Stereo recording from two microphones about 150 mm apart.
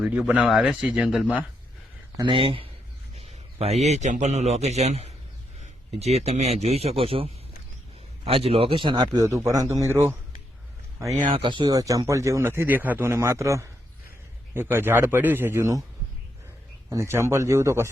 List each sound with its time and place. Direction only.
0.0 s speech: 5° right (ahead or behind)
2.1 s a man's voice: 35° right (ahead or behind); by 10.2 s 15° right (ahead or behind)
11.3 s a man's voice: 35° right (ahead or behind); by 15.8 s 20° right (ahead or behind)
16.9 s speech: 20° right (ahead or behind)